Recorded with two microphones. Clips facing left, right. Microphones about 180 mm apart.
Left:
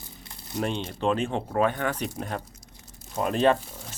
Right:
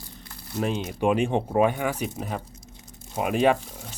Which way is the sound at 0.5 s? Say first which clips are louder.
Right 1 dB; 15° left (ahead or behind).